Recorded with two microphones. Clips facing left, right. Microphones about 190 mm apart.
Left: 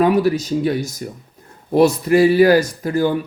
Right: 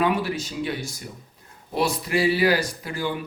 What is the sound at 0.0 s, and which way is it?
Speech, 40° left (ahead or behind).